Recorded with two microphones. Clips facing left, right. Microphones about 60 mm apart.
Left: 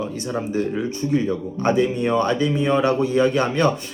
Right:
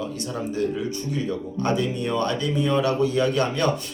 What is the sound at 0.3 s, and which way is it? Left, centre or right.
Speech, left.